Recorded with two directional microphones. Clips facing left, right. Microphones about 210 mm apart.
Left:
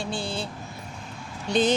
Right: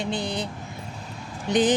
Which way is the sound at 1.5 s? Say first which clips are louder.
Right 2 dB; 15° right (ahead or behind).